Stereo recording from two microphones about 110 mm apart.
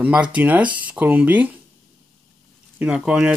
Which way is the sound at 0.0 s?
10° right (ahead or behind).